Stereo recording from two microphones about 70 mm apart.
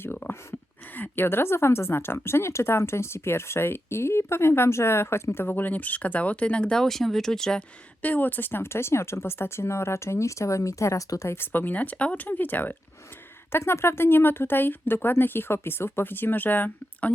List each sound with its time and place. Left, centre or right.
0.0 s a sound: left
0.9 s speech: left; by 7.6 s centre
8.0 s speech: left
11.5 s speech: left
13.5 s speech: left